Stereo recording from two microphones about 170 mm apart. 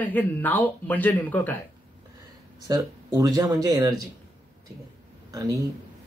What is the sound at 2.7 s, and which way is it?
Speech, 20° right (ahead or behind).